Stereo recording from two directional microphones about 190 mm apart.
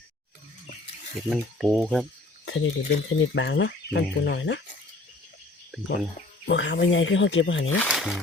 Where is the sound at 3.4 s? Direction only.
70° left (ahead or behind).